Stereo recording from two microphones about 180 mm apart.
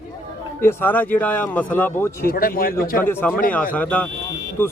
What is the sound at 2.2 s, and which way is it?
Speech, 55° left (ahead or behind).